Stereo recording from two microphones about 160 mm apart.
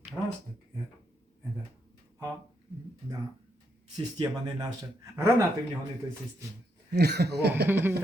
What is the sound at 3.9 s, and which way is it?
Speech, 25° right (ahead or behind).